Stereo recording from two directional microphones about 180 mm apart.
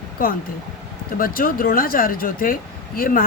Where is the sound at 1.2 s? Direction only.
55° left (ahead or behind).